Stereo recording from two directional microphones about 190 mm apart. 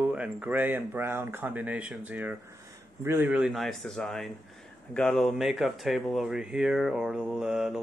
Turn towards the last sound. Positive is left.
turn(degrees=-5)  # may be behind; listen again after turning